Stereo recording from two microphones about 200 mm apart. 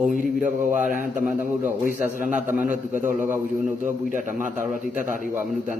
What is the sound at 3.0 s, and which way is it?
A man's voice, 40° right (ahead or behind).